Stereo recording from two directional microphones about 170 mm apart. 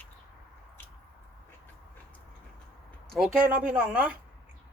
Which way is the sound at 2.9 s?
5° left (ahead or behind).